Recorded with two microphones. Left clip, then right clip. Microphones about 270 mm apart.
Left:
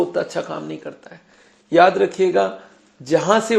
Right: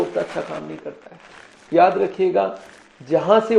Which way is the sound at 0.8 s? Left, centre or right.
Left.